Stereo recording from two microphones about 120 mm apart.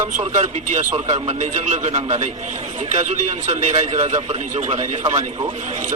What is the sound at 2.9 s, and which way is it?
A man's voice, 90° right.